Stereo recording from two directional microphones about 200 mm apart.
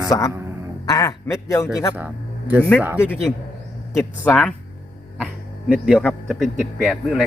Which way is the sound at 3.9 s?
10° left (ahead or behind).